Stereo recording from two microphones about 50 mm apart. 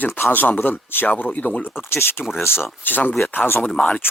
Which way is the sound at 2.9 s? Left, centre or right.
Left.